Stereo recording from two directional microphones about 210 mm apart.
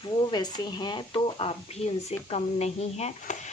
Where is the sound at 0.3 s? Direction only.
20° left (ahead or behind).